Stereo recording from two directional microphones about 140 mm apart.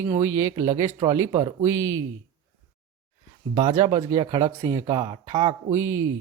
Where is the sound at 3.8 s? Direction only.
25° right (ahead or behind).